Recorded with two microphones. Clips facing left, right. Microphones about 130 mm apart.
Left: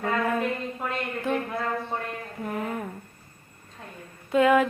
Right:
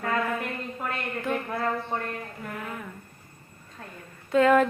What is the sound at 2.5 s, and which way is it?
Speech, 40° left (ahead or behind).